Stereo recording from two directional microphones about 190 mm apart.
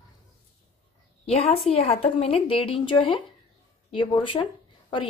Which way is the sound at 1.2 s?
30° left (ahead or behind).